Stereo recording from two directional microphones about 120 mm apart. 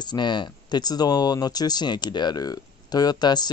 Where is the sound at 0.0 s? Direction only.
40° left (ahead or behind).